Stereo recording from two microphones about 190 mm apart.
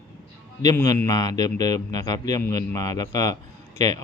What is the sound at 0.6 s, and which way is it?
Speech, 20° left (ahead or behind).